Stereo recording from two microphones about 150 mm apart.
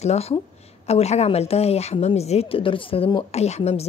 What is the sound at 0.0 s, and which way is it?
A woman's voice, 45° left (ahead or behind).